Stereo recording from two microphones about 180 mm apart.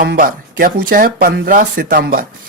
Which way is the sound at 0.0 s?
55° right (ahead or behind).